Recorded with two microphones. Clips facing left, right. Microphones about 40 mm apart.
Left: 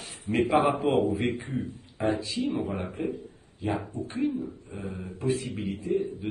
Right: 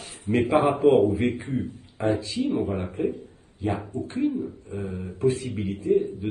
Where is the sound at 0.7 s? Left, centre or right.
Right.